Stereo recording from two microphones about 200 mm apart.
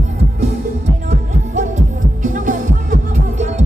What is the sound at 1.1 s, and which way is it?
Music, 40° right (ahead or behind).